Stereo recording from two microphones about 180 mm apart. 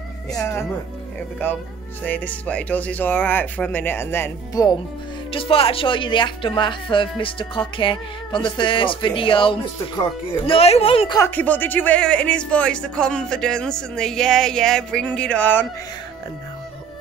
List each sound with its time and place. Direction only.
0.3 s speech: 10° left (ahead or behind)
2.0 s speech: 10° left (ahead or behind)
5.3 s speech: 30° left (ahead or behind)
11.1 s speech: 10° left (ahead or behind)